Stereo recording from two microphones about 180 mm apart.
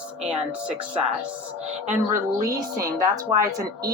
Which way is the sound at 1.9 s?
15° right (ahead or behind).